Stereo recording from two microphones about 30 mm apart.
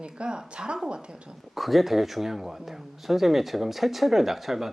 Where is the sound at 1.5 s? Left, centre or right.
Centre.